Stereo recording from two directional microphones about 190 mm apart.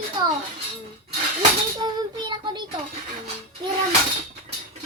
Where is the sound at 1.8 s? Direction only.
25° right (ahead or behind).